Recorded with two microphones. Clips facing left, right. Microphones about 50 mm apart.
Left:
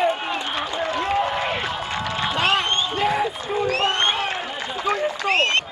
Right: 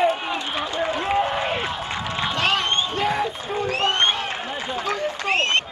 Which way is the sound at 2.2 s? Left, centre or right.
Centre.